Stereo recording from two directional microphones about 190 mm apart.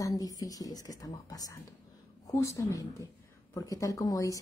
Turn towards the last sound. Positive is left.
turn(degrees=20)  # may be behind; listen again after turning